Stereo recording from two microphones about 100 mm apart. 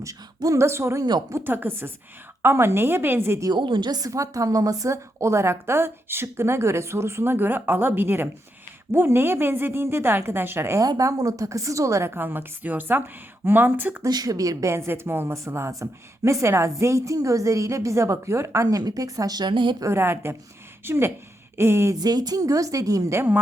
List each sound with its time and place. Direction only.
0.0 s a woman's voice: 35° right (ahead or behind)
3.5 s a woman's voice: 50° right (ahead or behind); by 10.8 s 25° right (ahead or behind)
10.8 s a woman's voice: 35° right (ahead or behind); by 14.0 s 20° right (ahead or behind)
14.0 s a woman's voice: 40° right (ahead or behind)
19.8 s a woman's voice: 25° right (ahead or behind)
21.9 s a woman's voice: 40° right (ahead or behind); by 23.4 s 25° right (ahead or behind)